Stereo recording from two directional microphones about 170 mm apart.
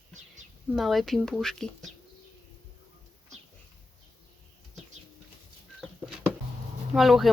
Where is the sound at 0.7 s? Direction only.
Centre (ahead or behind).